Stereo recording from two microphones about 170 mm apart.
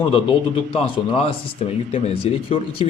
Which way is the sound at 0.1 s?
30° left (ahead or behind).